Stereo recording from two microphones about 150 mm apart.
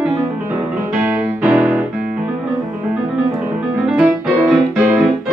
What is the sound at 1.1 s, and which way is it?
Music, 5° right (ahead or behind).